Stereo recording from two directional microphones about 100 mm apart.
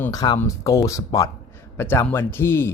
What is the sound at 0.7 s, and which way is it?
Speech, 30° left (ahead or behind).